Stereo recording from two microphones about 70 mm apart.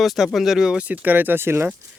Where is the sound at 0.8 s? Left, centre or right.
Right.